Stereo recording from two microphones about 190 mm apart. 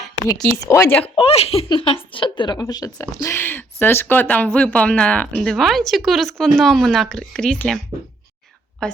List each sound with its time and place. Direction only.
0.7 s speech: 15° left (ahead or behind)
1.1 s a woman's voice: 30° left (ahead or behind); by 7.8 s 5° left (ahead or behind)
8.8 s speech: 5° left (ahead or behind)